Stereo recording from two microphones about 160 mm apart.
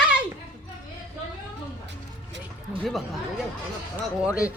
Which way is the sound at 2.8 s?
Centre (ahead or behind).